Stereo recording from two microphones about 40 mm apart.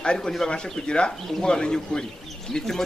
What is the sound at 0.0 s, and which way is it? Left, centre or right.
A man's voice, left.